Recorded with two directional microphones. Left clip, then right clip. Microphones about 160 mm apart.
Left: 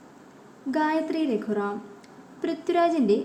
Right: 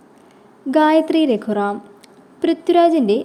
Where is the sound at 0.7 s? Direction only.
45° right (ahead or behind).